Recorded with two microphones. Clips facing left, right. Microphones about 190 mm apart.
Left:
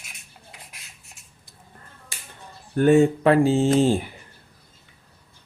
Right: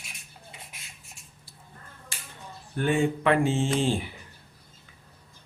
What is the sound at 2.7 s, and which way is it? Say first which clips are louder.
Speech: left 9 dB; 45° left (ahead or behind).